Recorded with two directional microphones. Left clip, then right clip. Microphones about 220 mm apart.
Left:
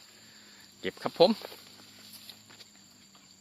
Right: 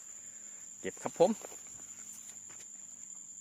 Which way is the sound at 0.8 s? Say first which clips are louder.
Left 5 dB; 15° right (ahead or behind).